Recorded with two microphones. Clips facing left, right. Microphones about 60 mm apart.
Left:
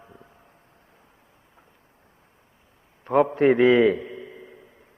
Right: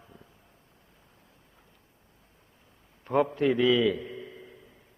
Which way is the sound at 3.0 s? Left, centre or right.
Left.